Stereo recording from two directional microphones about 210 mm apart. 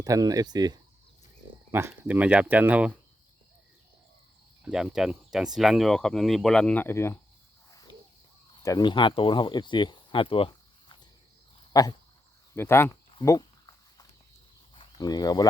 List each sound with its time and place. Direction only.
0.0 s speech: 15° right (ahead or behind)
4.6 s speech: 5° right (ahead or behind)
8.6 s speech: 20° left (ahead or behind)
13.1 s a sound: 15° left (ahead or behind)
14.8 s speech: 20° left (ahead or behind)